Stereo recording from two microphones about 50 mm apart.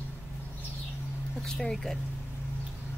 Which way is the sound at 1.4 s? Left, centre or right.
Centre.